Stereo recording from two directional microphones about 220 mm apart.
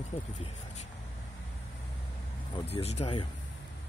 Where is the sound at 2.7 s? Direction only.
30° left (ahead or behind).